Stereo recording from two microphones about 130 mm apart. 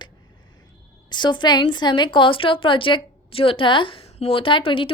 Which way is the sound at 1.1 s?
35° left (ahead or behind).